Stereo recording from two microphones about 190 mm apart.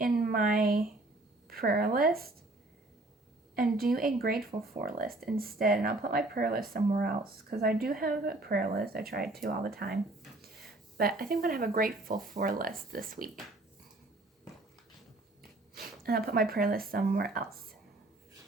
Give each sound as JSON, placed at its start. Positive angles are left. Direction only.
{"t": 0.0, "sound": "speech", "side_deg": -50}
{"t": 3.5, "sound": "a woman's voice", "side_deg": -50}
{"t": 10.9, "sound": "speech", "side_deg": -50}
{"t": 15.7, "sound": "speech", "side_deg": -55}